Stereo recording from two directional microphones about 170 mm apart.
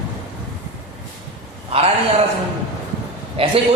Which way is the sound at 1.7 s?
35° right (ahead or behind).